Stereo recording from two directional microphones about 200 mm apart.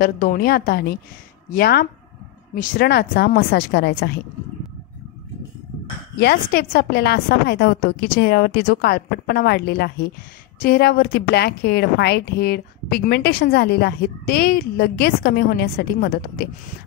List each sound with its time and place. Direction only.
0.0 s speech: 45° left (ahead or behind)
6.1 s speech: 50° left (ahead or behind)